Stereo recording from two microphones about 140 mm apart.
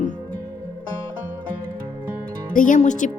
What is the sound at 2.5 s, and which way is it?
Speech, 70° left (ahead or behind).